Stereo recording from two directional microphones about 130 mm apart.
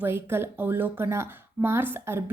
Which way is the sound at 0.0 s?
20° right (ahead or behind).